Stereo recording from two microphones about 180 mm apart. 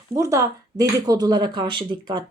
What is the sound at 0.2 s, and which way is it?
A woman's voice, 15° right (ahead or behind).